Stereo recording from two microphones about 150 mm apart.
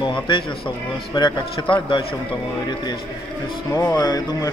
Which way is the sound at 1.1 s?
30° left (ahead or behind).